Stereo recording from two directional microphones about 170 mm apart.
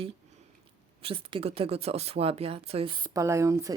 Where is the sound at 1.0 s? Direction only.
30° right (ahead or behind).